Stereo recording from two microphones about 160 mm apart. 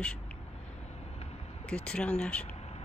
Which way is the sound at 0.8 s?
40° left (ahead or behind).